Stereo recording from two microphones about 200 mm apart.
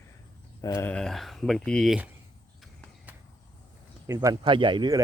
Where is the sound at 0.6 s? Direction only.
15° left (ahead or behind); by 2.1 s 5° right (ahead or behind).